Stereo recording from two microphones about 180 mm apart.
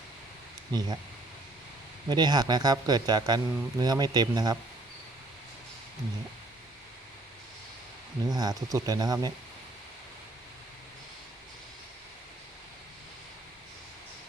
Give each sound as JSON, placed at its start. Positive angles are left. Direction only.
{"t": 0.7, "sound": "speech", "side_deg": -20}
{"t": 2.0, "sound": "speech", "side_deg": -25}
{"t": 8.3, "sound": "speech", "side_deg": -20}